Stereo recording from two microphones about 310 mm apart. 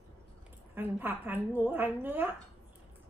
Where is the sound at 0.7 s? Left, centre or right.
Centre.